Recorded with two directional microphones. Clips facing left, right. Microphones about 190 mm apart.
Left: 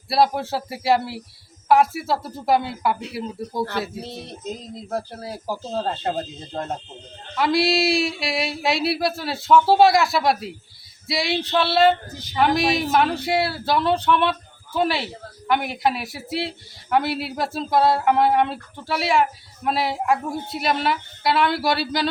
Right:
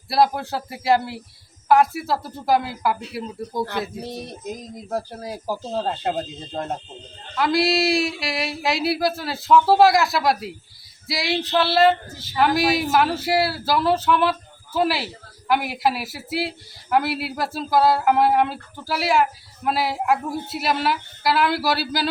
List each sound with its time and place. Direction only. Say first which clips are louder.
0.1 s speech: even; centre (ahead or behind)
4.0 s speech: right 1 dB; 15° right (ahead or behind)
7.3 s speech: even; centre (ahead or behind)
12.1 s speech: left 2 dB; 15° left (ahead or behind)
12.5 s speech: even; centre (ahead or behind)